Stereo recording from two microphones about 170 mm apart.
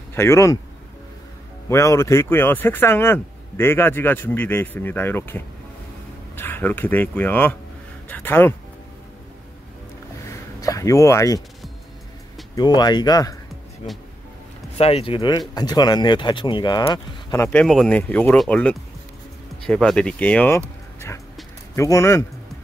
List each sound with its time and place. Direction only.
0.1 s speech: 15° left (ahead or behind)
1.7 s speech: 15° left (ahead or behind)
10.6 s speech: 20° left (ahead or behind)
12.5 s speech: 25° left (ahead or behind)
14.8 s speech: 35° left (ahead or behind)
17.5 s speech: 5° left (ahead or behind)